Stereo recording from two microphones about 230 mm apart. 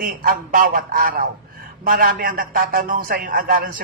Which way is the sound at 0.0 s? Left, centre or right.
Right.